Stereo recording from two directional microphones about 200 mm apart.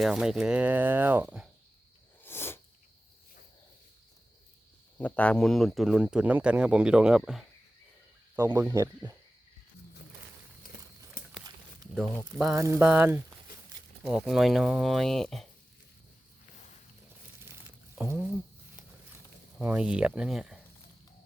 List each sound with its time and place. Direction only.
0.0 s speech: 5° right (ahead or behind)
2.2 s a sound: 10° left (ahead or behind)
4.9 s speech: 5° left (ahead or behind)
8.4 s speech: 15° right (ahead or behind)
11.9 s speech: 5° right (ahead or behind)
17.5 s a sound: 10° right (ahead or behind)
19.5 s speech: 5° right (ahead or behind)